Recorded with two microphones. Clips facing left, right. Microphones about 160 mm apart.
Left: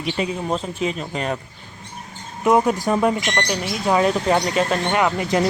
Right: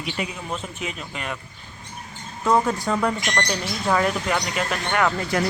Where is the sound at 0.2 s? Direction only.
35° left (ahead or behind).